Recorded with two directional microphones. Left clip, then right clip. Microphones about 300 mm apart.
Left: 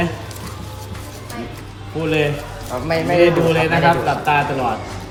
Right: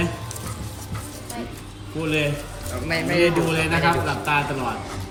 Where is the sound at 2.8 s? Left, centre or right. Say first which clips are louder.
Left 5 dB; left.